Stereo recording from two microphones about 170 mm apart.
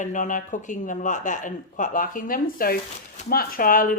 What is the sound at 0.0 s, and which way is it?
Speech, 45° left (ahead or behind).